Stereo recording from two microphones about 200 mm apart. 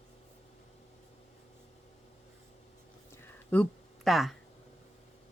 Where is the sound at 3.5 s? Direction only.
5° left (ahead or behind).